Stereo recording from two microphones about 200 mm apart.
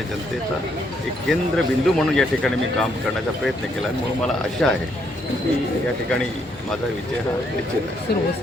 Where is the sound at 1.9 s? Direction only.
Centre (ahead or behind).